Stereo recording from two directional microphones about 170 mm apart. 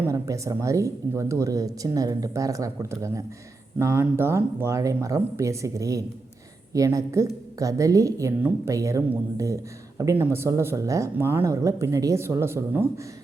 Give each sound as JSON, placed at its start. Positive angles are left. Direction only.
{"t": 0.0, "sound": "speech", "side_deg": -20}